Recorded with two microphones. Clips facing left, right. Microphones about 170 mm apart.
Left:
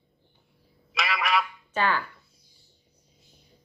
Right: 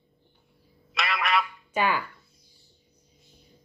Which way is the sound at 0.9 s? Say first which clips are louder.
Even; centre (ahead or behind).